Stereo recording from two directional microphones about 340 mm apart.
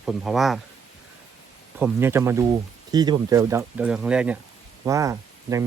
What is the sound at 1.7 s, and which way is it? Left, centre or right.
Speech, centre.